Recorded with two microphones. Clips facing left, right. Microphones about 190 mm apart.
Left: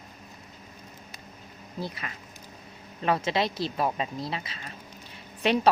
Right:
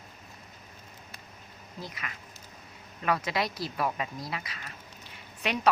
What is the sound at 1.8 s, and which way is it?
A woman's voice, 30° left (ahead or behind).